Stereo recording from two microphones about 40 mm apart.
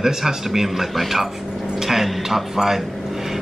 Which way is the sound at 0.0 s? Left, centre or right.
Centre.